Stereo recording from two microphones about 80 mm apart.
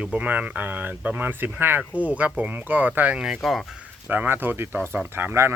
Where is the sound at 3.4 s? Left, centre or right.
Centre.